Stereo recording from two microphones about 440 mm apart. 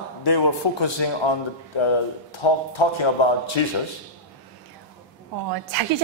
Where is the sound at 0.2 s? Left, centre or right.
Left.